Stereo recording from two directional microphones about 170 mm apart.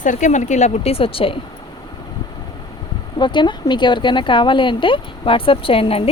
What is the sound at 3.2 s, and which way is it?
Speech, 25° left (ahead or behind).